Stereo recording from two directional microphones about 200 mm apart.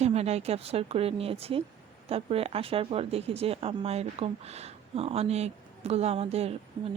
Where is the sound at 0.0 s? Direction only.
30° right (ahead or behind).